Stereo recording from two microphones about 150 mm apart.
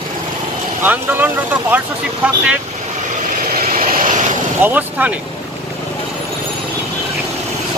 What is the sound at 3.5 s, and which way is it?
Vehicle, 70° right (ahead or behind).